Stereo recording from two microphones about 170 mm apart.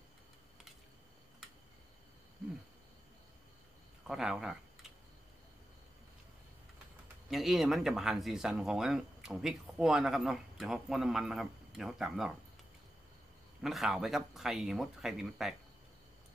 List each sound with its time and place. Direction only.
4.1 s speech: centre (ahead or behind)
7.2 s speech: centre (ahead or behind)
13.6 s speech: centre (ahead or behind)